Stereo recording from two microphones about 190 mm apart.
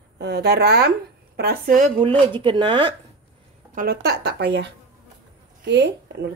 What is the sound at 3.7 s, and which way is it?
Speech, 50° right (ahead or behind).